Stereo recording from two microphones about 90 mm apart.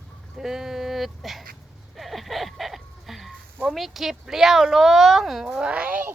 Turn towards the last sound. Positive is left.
turn(degrees=-20)  # may be behind; listen again after turning